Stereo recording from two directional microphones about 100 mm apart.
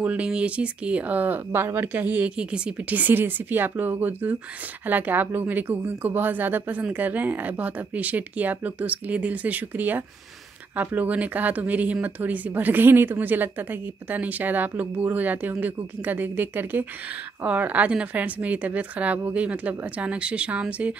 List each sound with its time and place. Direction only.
0.0 s speech: 15° right (ahead or behind)